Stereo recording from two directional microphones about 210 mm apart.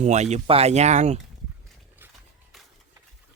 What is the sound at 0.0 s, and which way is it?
Speech, 35° right (ahead or behind).